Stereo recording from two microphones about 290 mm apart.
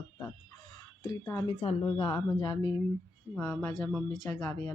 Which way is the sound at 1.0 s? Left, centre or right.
Centre.